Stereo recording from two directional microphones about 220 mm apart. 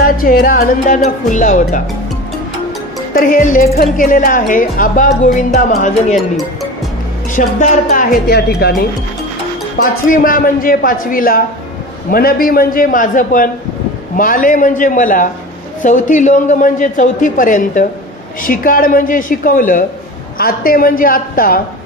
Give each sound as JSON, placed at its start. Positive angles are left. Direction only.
{"t": 0.0, "sound": "speech", "side_deg": 40}
{"t": 3.2, "sound": "speech", "side_deg": 40}
{"t": 7.4, "sound": "a woman's voice", "side_deg": 40}
{"t": 9.8, "sound": "speech", "side_deg": 40}